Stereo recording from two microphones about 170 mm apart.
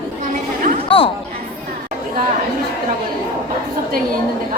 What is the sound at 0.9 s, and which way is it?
Speech, 30° left (ahead or behind).